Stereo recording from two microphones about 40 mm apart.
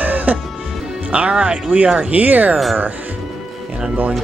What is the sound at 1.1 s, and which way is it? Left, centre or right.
Speech, right.